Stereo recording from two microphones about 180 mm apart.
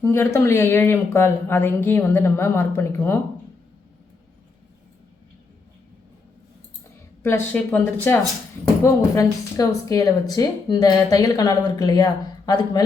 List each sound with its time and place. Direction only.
0.0 s speech: 15° left (ahead or behind)
7.2 s speech: 15° left (ahead or behind)